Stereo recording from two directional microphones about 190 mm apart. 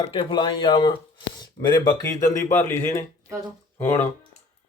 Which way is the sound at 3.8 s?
10° left (ahead or behind).